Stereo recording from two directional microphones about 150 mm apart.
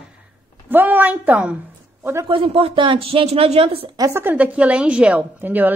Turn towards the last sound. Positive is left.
turn(degrees=-10)  # may be behind; listen again after turning